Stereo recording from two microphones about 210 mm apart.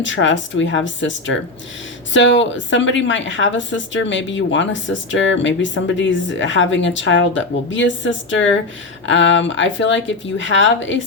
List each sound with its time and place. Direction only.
0.0 s a woman's voice: 60° left (ahead or behind)